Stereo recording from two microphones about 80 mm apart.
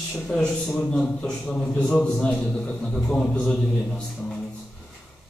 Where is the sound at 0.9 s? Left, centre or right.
Centre.